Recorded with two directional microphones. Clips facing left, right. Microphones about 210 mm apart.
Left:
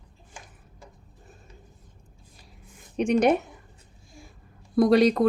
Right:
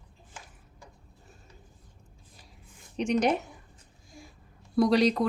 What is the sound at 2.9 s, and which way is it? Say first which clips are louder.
Speech: left 4 dB; 55° left (ahead or behind).